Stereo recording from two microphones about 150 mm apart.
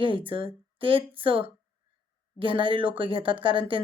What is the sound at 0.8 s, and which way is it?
Speech, 35° right (ahead or behind).